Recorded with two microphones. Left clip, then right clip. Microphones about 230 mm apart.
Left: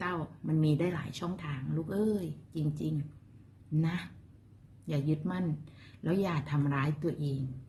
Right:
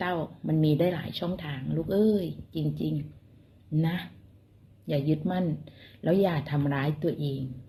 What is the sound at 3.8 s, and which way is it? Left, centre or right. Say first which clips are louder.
Speech: right 5 dB; centre.